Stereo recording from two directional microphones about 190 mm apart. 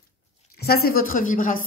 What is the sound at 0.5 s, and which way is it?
Speech, 55° left (ahead or behind).